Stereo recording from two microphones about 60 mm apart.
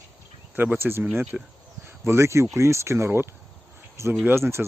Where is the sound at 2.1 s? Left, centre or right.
Right.